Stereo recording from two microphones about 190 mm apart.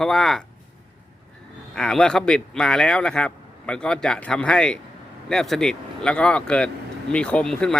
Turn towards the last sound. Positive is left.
turn(degrees=5)  # may be behind; listen again after turning